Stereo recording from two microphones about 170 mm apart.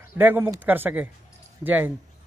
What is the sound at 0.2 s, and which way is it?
Speech, 10° right (ahead or behind).